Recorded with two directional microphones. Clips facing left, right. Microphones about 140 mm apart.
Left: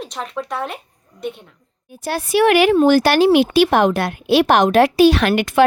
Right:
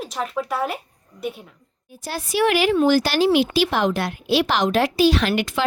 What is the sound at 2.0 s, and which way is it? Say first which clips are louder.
A woman's voice: left 5 dB; 60° left (ahead or behind).